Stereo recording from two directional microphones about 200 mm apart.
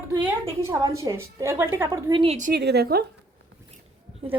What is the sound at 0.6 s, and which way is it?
A woman's voice, 15° right (ahead or behind).